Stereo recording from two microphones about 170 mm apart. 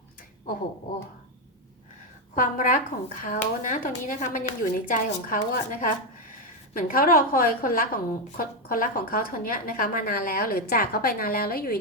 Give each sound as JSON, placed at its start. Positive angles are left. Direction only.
{"t": 2.3, "sound": "a woman's voice", "side_deg": 55}